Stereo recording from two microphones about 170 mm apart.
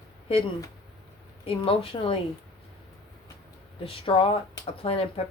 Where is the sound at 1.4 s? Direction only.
35° left (ahead or behind).